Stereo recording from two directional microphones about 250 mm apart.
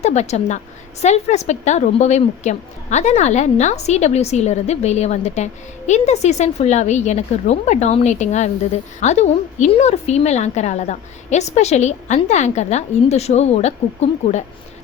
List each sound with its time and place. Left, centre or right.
0.0 s a woman's voice: left